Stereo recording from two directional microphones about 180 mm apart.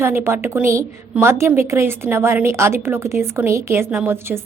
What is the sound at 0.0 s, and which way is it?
A woman's voice, 15° right (ahead or behind).